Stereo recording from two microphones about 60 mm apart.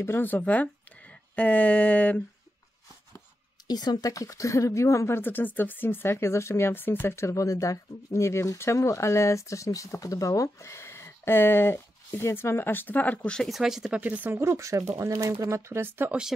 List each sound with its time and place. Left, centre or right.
0.0 s speech: left
4.0 s speech: left
6.7 s speech: left
7.2 s speech: left
13.5 s speech: centre
13.9 s speech: right
14.4 s speech: right